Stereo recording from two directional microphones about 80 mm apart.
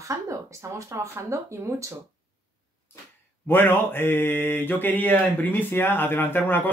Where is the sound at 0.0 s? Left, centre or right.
Right.